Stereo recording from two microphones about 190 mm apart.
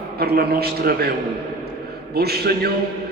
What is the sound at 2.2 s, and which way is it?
Speech, 55° right (ahead or behind).